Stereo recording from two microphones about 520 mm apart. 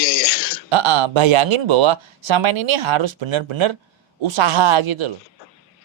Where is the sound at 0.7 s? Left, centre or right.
Right.